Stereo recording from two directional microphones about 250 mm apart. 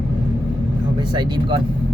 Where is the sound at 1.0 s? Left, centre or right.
Centre.